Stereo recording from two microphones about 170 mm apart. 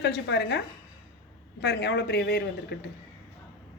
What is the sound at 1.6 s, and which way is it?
A woman's voice, 75° left (ahead or behind).